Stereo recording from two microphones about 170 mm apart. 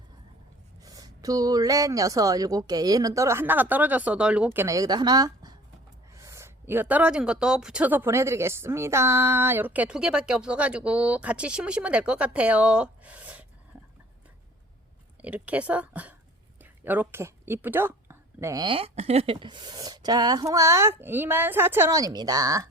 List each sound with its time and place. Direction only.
0.9 s a woman's voice: 20° right (ahead or behind)
15.2 s speech: 10° right (ahead or behind)
16.6 s a sound: 10° right (ahead or behind)
18.6 s a woman's voice: 30° right (ahead or behind)